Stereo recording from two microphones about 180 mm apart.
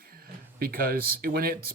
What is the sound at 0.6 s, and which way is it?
Speech, 55° right (ahead or behind).